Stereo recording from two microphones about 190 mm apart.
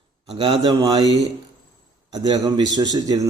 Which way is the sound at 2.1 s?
20° right (ahead or behind).